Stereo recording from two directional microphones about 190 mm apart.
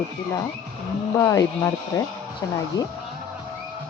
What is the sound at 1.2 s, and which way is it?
Speech, 15° left (ahead or behind).